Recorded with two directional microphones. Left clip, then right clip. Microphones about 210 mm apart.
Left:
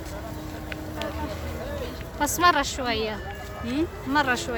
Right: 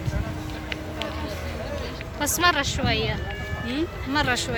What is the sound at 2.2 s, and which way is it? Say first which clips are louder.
Speech: left 1 dB; 15° left (ahead or behind).